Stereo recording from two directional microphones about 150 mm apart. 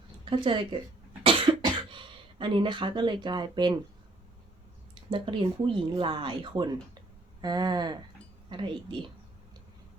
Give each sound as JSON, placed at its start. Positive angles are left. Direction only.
{"t": 0.3, "sound": "speech", "side_deg": -35}
{"t": 1.2, "sound": "cough", "side_deg": -35}
{"t": 5.1, "sound": "speech", "side_deg": -35}
{"t": 7.4, "sound": "a sound", "side_deg": -25}
{"t": 8.4, "sound": "speech", "side_deg": -30}